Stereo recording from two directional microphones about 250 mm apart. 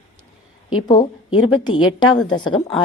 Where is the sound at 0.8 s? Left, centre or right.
Centre.